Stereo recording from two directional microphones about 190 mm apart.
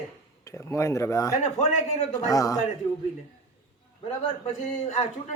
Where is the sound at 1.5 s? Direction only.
35° left (ahead or behind).